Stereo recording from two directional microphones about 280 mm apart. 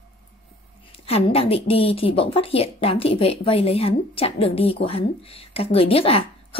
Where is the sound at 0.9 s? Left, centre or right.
Centre.